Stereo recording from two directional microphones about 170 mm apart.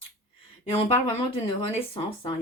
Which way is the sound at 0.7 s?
35° left (ahead or behind).